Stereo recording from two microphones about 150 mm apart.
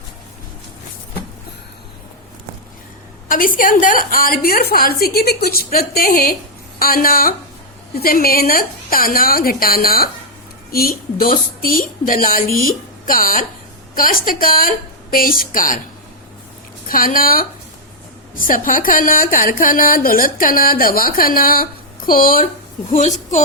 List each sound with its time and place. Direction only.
3.2 s a woman's voice: 65° left (ahead or behind)
16.9 s speech: 70° left (ahead or behind)
22.9 s a woman's voice: 50° left (ahead or behind)